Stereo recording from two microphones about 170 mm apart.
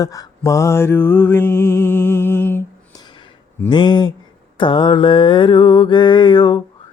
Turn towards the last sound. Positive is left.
turn(degrees=25)  # may be behind; listen again after turning